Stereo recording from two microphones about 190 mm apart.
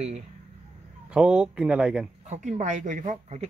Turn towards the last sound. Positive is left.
turn(degrees=-35)  # may be behind; listen again after turning